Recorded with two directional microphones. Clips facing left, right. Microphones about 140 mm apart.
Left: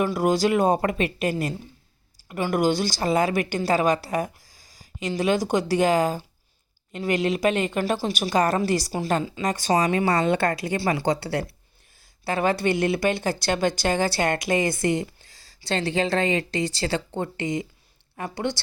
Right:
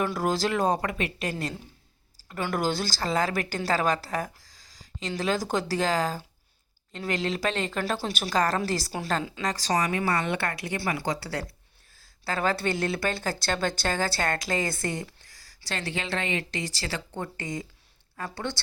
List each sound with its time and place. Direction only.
0.0 s a woman's voice: 15° left (ahead or behind)
8.3 s a woman's voice: 20° left (ahead or behind)